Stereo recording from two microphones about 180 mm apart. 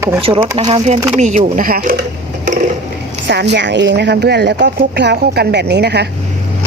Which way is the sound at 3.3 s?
70° right (ahead or behind).